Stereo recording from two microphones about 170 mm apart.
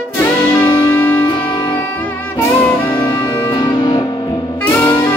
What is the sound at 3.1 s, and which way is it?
Music, 15° left (ahead or behind).